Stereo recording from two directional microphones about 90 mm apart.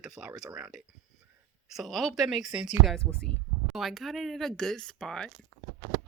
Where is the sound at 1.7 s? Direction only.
Centre (ahead or behind).